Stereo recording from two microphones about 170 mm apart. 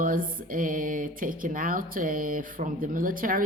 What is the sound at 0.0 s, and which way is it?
Speech, 55° right (ahead or behind).